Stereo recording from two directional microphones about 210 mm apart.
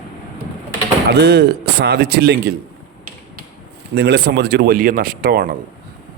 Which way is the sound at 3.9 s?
50° right (ahead or behind).